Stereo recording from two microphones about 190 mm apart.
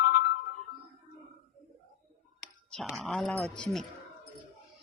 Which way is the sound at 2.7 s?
Centre (ahead or behind).